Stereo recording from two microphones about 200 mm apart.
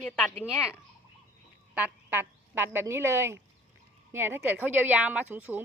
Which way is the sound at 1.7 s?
10° right (ahead or behind).